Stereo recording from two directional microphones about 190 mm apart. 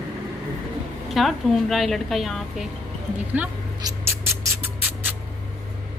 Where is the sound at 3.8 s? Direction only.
15° right (ahead or behind).